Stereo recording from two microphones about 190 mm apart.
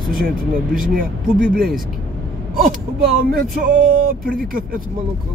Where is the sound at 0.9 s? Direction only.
50° right (ahead or behind).